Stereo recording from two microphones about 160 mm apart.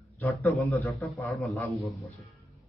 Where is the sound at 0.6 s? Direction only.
20° left (ahead or behind).